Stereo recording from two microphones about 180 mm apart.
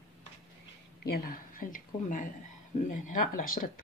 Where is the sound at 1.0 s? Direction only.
55° left (ahead or behind).